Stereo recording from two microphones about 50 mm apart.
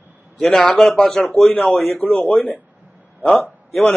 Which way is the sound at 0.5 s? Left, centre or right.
Centre.